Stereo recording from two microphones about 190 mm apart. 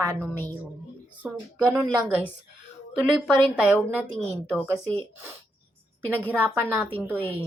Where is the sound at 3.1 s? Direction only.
Centre (ahead or behind).